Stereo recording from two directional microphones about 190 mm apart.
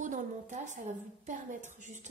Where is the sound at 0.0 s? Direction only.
40° right (ahead or behind).